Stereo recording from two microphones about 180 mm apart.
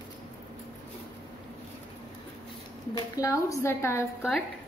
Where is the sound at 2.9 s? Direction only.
20° left (ahead or behind).